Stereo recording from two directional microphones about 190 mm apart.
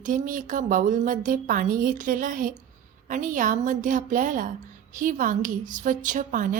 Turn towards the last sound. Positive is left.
turn(degrees=-45)  # may be behind; listen again after turning